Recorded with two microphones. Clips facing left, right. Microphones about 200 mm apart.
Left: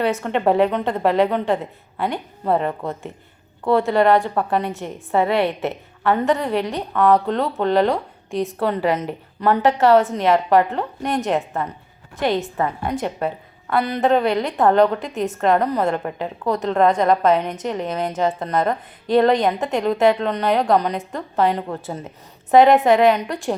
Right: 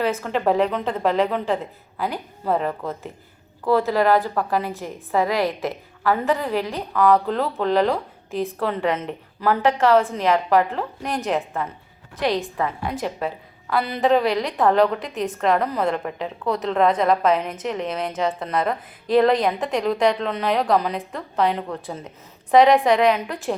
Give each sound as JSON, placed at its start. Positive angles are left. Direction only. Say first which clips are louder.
{"t": 0.0, "sound": "a woman's voice", "louder": "left 2 dB", "side_deg": 0}
{"t": 5.3, "sound": "a woman's voice", "louder": "left 3 dB", "side_deg": 25}
{"t": 6.0, "sound": "a woman's voice", "louder": "left 2 dB", "side_deg": 0}
{"t": 22.5, "sound": "a woman's voice", "louder": "left 2 dB", "side_deg": 0}